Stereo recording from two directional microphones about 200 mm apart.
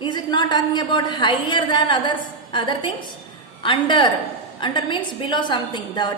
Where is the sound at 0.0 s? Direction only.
25° left (ahead or behind).